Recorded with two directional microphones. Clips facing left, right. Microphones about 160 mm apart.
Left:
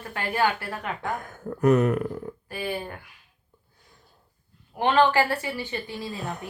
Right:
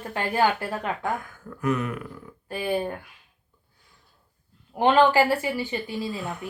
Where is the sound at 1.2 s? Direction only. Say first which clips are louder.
Left 8 dB; 40° left (ahead or behind).